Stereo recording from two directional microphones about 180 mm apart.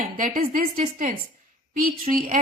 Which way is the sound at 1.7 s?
50° right (ahead or behind).